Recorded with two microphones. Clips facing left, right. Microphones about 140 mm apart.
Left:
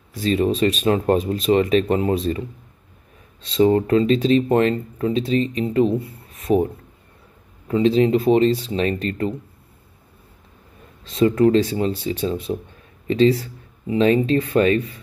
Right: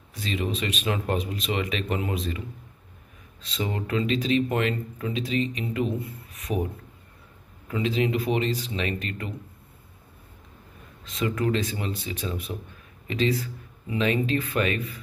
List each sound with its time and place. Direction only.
0.1 s speech: 35° left (ahead or behind)
3.6 s speech: 40° left (ahead or behind)
11.1 s speech: 30° left (ahead or behind)